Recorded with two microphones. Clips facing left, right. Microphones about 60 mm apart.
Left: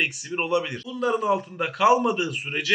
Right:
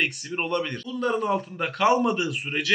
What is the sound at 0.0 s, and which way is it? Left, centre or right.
A man's voice, centre.